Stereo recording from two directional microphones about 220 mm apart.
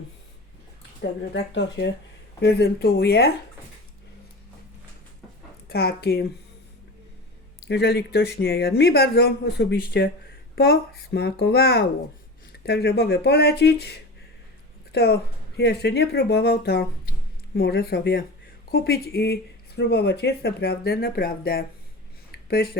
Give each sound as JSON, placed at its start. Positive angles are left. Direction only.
{"t": 1.3, "sound": "speech", "side_deg": 55}
{"t": 5.6, "sound": "speech", "side_deg": 45}
{"t": 7.7, "sound": "speech", "side_deg": 50}
{"t": 14.9, "sound": "speech", "side_deg": 45}